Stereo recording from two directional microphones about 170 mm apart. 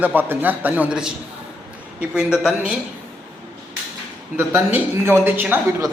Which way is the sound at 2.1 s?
5° right (ahead or behind).